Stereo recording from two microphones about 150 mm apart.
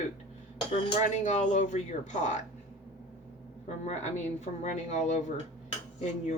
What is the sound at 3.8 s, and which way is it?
A woman's voice, 50° left (ahead or behind).